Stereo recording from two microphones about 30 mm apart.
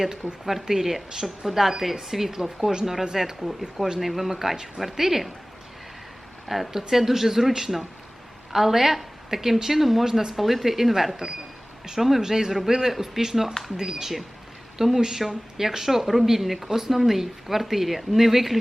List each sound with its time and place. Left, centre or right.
0.4 s speech: centre
6.5 s speech: centre
10.4 s speech: centre
12.2 s speech: centre